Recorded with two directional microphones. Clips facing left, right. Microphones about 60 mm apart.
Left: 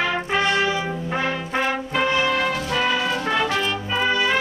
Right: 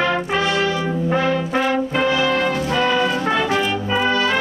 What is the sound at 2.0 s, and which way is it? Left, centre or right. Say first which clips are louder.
Brass instrument: even; centre.